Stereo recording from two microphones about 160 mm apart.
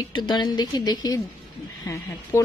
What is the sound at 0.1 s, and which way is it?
A woman's voice, 30° left (ahead or behind).